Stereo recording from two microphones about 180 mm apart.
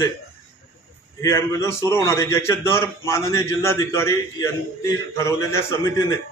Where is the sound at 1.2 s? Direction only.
15° left (ahead or behind).